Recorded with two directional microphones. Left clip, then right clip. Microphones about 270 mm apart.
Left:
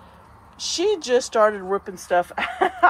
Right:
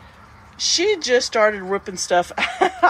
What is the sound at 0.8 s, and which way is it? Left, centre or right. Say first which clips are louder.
Speech: right 1 dB; centre.